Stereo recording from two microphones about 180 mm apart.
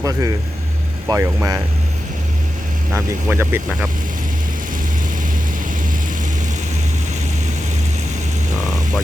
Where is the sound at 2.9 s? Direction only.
10° right (ahead or behind).